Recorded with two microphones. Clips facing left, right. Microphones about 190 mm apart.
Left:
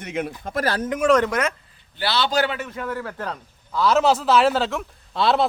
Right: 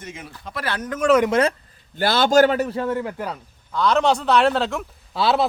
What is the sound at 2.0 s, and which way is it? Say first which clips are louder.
A man's voice: right 6 dB; 45° right (ahead or behind).